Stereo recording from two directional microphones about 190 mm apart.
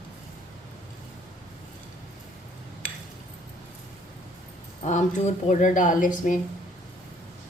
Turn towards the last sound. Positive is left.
turn(degrees=45)  # may be behind; listen again after turning